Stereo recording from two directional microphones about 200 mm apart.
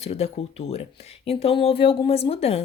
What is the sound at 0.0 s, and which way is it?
A woman's voice, 30° left (ahead or behind).